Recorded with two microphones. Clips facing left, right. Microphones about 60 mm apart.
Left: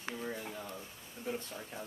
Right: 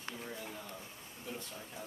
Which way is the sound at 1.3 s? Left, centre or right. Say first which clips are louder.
Left 6 dB; left.